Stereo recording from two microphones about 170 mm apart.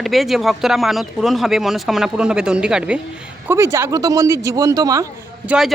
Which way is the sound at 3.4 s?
15° right (ahead or behind).